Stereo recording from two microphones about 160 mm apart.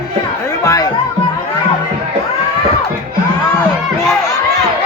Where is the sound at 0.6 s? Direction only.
20° left (ahead or behind).